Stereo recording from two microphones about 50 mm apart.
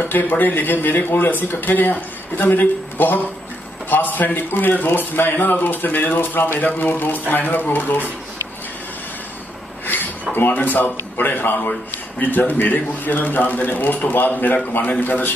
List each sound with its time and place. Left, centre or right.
0.0 s a man's voice: left
10.3 s a man's voice: left